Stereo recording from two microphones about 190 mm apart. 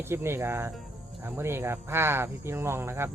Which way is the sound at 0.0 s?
15° right (ahead or behind).